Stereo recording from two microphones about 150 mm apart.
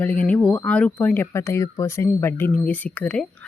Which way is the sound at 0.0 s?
10° left (ahead or behind).